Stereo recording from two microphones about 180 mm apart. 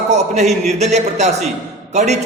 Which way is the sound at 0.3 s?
40° right (ahead or behind).